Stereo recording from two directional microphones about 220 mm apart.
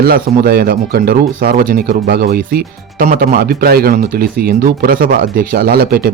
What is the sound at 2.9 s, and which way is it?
Speech, 40° right (ahead or behind).